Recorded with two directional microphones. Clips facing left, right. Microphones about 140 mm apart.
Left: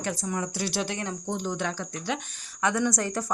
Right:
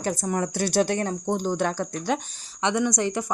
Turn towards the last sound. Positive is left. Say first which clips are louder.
# right 3 dB
turn(degrees=-20)  # may be behind; listen again after turning